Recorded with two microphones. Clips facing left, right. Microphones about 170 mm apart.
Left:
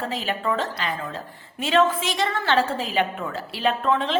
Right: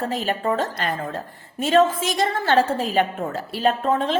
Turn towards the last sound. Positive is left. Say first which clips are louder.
# right 2 dB
turn(degrees=-45)  # may be behind; listen again after turning